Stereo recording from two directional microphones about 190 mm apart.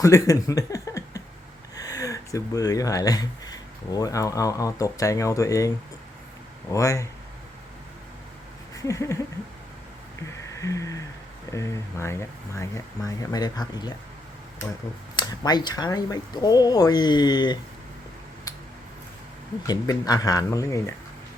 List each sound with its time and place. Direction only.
0.0 s speech: 15° left (ahead or behind)
6.7 s speech: 15° left (ahead or behind)
8.8 s speech: 15° left (ahead or behind)
10.2 s a sound: 15° left (ahead or behind)
11.5 s speech: 15° left (ahead or behind)
15.1 s speech: 20° left (ahead or behind)
19.6 s speech: 20° left (ahead or behind)